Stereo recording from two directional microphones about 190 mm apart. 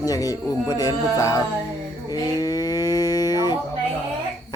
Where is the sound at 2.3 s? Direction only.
20° left (ahead or behind).